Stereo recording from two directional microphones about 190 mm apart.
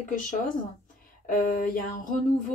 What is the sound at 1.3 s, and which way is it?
Speech, 45° left (ahead or behind).